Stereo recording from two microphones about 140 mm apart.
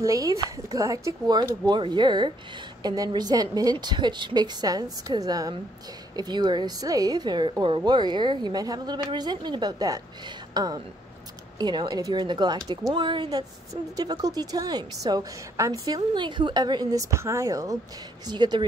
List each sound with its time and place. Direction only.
0.0 s a woman's voice: 25° right (ahead or behind)